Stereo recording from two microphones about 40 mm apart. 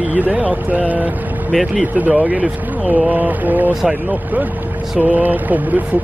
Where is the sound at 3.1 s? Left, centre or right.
Right.